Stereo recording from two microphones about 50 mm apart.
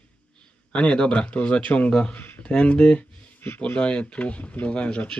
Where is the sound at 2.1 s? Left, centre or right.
Left.